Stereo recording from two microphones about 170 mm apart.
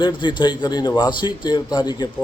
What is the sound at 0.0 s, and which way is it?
A man's voice, 25° left (ahead or behind).